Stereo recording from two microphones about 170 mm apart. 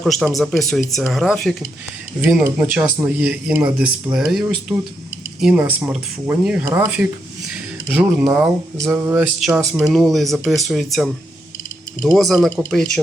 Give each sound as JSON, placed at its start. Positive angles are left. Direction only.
{"t": 0.0, "sound": "speech", "side_deg": 0}
{"t": 8.8, "sound": "a sound", "side_deg": -20}
{"t": 9.4, "sound": "speech", "side_deg": 0}